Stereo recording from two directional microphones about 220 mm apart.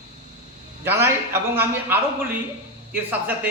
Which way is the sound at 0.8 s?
10° right (ahead or behind).